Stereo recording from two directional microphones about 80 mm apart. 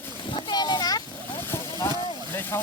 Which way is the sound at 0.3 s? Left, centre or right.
Left.